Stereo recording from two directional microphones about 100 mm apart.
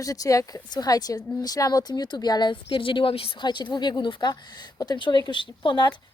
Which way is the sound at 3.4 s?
50° left (ahead or behind).